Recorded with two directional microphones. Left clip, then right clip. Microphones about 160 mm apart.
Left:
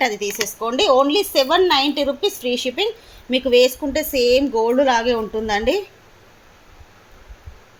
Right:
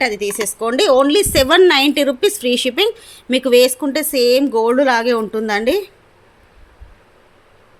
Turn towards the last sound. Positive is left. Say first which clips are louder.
# right 3 dB
turn(degrees=-35)  # may be behind; listen again after turning